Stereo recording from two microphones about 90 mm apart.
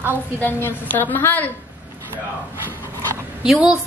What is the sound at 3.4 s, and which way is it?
Speech, 10° right (ahead or behind).